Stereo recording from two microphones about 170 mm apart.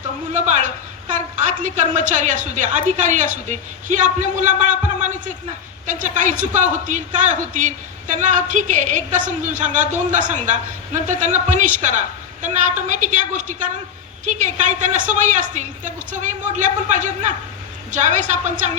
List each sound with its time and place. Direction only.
0.3 s a woman's voice: 45° right (ahead or behind)